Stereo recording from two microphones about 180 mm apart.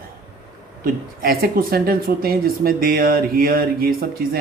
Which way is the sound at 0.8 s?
55° right (ahead or behind).